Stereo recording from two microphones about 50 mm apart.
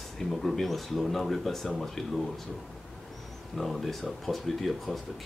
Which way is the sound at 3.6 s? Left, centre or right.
Centre.